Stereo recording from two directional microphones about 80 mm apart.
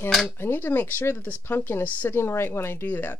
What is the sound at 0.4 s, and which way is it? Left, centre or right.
Speech, left.